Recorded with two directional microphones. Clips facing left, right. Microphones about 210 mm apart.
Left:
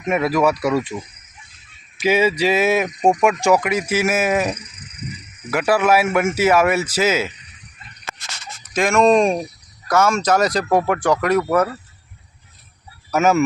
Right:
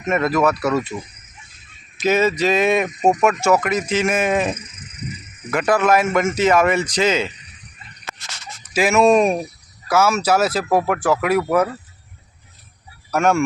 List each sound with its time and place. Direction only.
0.0 s a man's voice: 10° left (ahead or behind)
2.0 s a man's voice: 10° left (ahead or behind)
8.7 s speech: 5° right (ahead or behind)
13.1 s speech: 5° left (ahead or behind)